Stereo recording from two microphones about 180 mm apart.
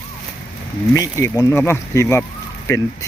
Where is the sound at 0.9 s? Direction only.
15° left (ahead or behind).